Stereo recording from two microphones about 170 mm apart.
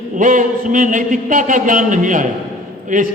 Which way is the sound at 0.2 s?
50° right (ahead or behind).